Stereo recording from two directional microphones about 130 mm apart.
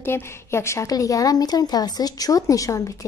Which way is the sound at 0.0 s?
20° left (ahead or behind).